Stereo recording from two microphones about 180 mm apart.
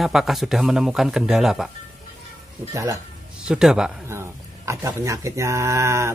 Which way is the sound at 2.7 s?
20° right (ahead or behind).